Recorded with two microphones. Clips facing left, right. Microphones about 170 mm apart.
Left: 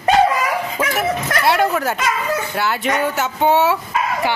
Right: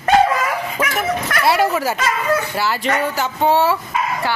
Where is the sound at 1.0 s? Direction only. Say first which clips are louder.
Left 1 dB; centre (ahead or behind).